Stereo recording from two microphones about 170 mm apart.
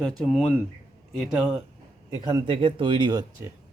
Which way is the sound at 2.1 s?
20° right (ahead or behind).